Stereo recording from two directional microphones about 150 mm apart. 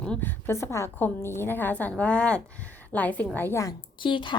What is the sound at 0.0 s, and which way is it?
A woman's voice, 10° left (ahead or behind).